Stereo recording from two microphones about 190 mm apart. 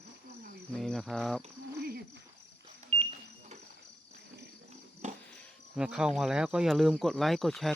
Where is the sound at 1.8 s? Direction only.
55° right (ahead or behind).